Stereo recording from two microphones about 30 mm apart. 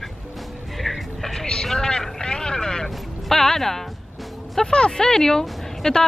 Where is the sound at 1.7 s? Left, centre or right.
Left.